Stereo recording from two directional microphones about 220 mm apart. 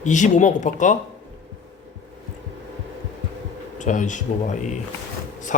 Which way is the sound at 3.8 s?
35° left (ahead or behind).